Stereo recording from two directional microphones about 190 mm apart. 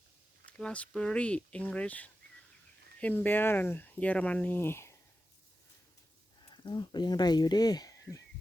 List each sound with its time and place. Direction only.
0.4 s speech: 5° left (ahead or behind)
6.5 s speech: 25° left (ahead or behind)